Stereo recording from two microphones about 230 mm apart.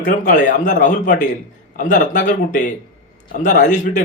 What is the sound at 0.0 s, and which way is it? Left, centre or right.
Speech, left.